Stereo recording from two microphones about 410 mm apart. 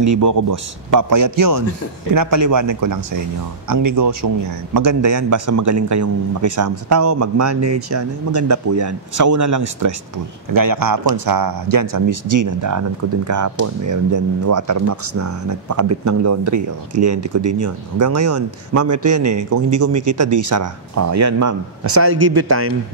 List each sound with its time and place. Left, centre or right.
0.0 s a man's voice: right